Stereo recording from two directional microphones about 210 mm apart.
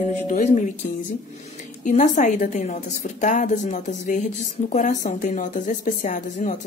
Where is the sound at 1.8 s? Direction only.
35° left (ahead or behind).